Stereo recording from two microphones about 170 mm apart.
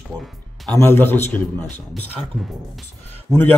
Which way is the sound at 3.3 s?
10° right (ahead or behind).